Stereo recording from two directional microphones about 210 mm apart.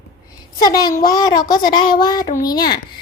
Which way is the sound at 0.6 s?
20° left (ahead or behind).